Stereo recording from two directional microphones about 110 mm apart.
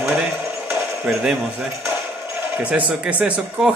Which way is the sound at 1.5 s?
20° right (ahead or behind).